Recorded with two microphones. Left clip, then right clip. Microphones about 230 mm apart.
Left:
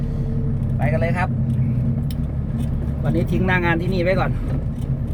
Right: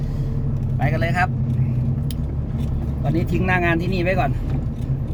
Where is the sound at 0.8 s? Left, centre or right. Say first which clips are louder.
Left 1 dB; right.